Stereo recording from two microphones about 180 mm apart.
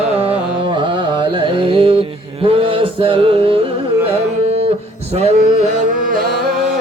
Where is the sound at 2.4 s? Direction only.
30° right (ahead or behind).